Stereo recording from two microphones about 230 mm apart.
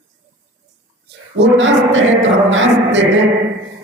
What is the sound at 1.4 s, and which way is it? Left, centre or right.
Speech, right.